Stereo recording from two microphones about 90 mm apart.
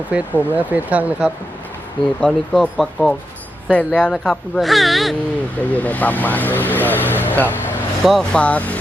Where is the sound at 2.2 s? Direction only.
Centre (ahead or behind).